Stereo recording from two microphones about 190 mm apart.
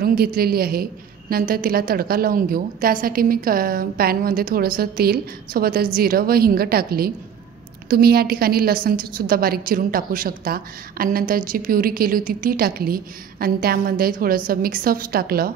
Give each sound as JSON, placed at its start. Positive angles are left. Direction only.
{"t": 0.0, "sound": "a woman's voice", "side_deg": -50}